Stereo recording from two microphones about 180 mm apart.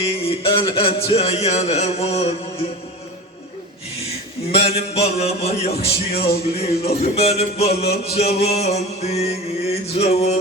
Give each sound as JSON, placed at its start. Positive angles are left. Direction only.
{"t": 0.1, "sound": "chant", "side_deg": 30}
{"t": 4.5, "sound": "chant", "side_deg": 35}